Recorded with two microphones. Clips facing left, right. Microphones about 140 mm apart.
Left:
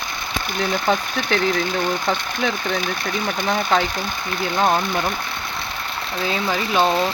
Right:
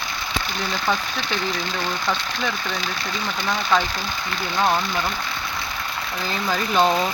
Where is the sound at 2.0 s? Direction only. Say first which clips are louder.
Left 3 dB; 20° left (ahead or behind).